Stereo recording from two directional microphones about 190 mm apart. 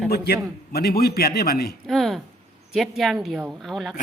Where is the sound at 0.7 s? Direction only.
55° left (ahead or behind).